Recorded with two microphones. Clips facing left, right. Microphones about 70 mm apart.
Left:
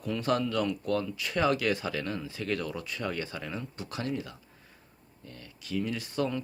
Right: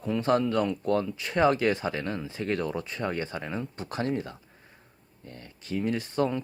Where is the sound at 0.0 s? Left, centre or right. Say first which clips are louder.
Right 4 dB; right.